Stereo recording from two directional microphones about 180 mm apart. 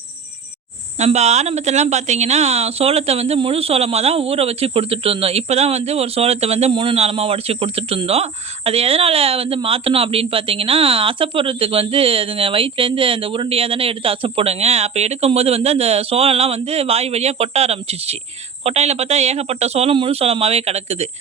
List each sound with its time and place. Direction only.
0.9 s a woman's voice: 40° right (ahead or behind)